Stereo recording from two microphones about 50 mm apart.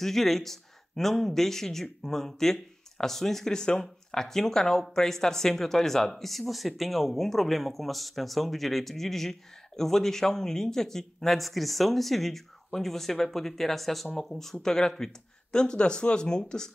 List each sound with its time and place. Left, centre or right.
0.0 s speech: centre